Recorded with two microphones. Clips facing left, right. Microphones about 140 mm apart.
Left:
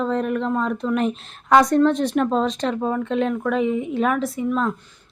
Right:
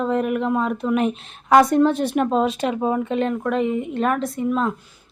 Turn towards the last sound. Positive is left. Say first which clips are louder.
# even
turn(degrees=-5)  # may be behind; listen again after turning